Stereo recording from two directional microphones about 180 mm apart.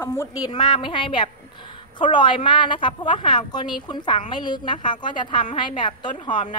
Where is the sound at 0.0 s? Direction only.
15° left (ahead or behind).